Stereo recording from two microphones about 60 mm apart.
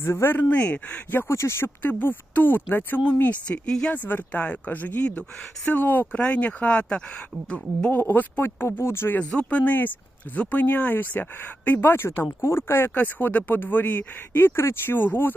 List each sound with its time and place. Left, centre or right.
0.0 s speech: left
0.5 s speech: left
1.3 s speech: left
1.8 s speech: left
3.7 s speech: centre
3.9 s speech: left
7.9 s speech: left
9.3 s speech: left
12.4 s speech: left
12.9 s speech: left